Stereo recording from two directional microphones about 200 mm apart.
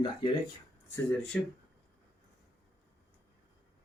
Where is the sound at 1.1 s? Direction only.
5° left (ahead or behind).